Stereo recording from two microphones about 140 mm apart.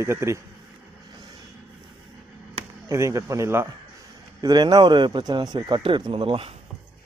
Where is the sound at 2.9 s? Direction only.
20° right (ahead or behind); by 6.5 s 40° right (ahead or behind).